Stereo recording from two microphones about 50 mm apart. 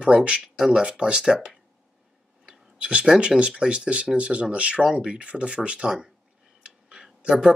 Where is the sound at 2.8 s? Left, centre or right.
Centre.